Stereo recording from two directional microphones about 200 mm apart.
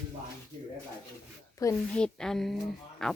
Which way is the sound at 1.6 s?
15° left (ahead or behind).